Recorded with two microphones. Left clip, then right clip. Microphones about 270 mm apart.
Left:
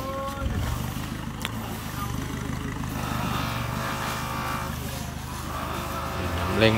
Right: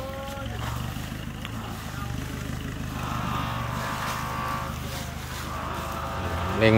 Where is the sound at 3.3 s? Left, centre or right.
Left.